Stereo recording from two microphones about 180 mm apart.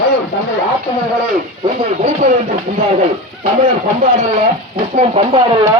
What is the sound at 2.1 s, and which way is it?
Speech, 40° right (ahead or behind).